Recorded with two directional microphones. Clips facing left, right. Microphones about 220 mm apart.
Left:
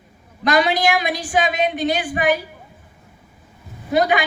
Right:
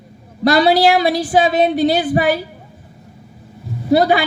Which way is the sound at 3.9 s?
35° right (ahead or behind).